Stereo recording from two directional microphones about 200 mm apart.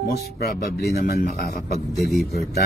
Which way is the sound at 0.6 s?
50° left (ahead or behind).